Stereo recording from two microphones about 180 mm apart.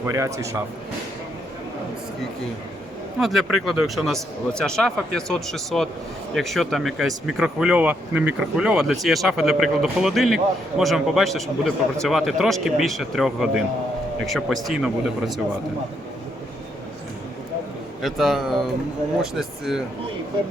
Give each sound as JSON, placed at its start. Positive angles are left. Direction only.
{"t": 0.0, "sound": "a man's voice", "side_deg": -15}
{"t": 3.2, "sound": "speech", "side_deg": 0}
{"t": 18.0, "sound": "speech", "side_deg": 0}